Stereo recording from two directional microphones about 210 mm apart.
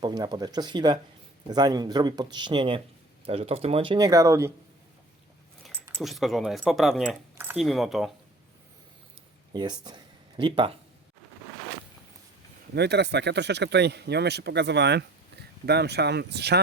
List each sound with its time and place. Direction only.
0.0 s speech: 20° right (ahead or behind)
6.0 s speech: centre (ahead or behind)
9.5 s speech: 20° right (ahead or behind)
12.7 s speech: 55° right (ahead or behind)